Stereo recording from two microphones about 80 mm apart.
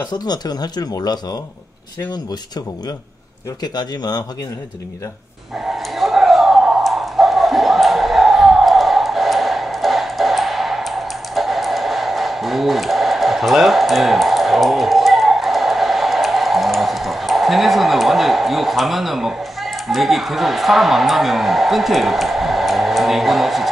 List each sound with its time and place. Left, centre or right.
0.1 s speech: left
3.7 s speech: left
5.9 s a sound: centre